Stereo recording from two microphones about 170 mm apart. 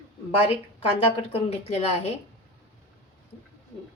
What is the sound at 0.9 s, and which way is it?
A woman's voice, 35° left (ahead or behind).